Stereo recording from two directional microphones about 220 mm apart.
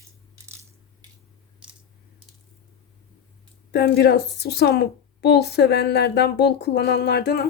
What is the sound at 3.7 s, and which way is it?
A woman's voice, 45° left (ahead or behind).